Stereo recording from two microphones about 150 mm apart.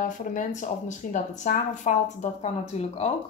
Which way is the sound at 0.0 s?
60° left (ahead or behind).